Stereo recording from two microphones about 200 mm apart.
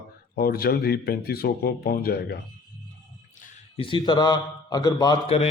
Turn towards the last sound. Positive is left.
turn(degrees=30)  # may be behind; listen again after turning